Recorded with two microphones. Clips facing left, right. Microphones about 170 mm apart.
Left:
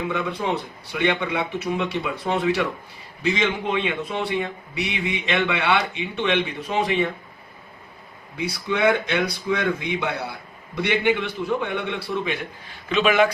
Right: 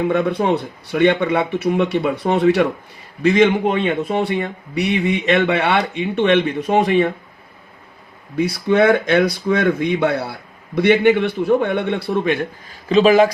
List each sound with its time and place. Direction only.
0.0 s a man's voice: 55° right (ahead or behind)
8.4 s a man's voice: 55° right (ahead or behind)
12.9 s speech: 35° right (ahead or behind)